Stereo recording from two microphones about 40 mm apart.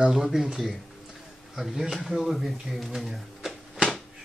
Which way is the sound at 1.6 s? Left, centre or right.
Centre.